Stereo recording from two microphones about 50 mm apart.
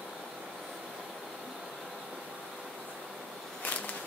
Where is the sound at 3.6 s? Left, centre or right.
Left.